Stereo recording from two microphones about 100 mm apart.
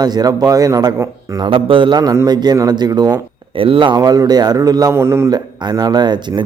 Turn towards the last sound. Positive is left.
turn(degrees=-50)  # may be behind; listen again after turning